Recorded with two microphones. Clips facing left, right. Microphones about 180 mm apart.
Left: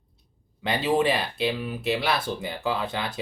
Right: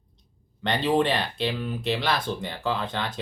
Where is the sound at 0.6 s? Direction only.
5° left (ahead or behind).